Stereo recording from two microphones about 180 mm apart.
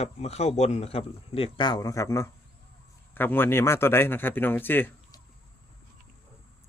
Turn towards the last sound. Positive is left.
turn(degrees=10)  # may be behind; listen again after turning